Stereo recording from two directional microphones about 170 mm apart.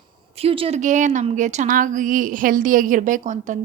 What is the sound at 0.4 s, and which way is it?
A woman's voice, 35° right (ahead or behind).